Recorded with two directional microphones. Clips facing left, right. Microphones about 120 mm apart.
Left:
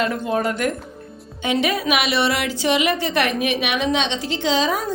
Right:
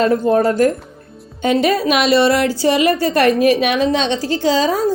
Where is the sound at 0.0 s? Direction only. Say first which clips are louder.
Right 8 dB; 35° right (ahead or behind).